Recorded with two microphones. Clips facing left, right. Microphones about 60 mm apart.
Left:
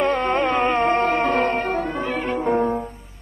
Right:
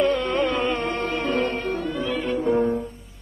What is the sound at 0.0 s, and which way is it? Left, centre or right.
Music, left.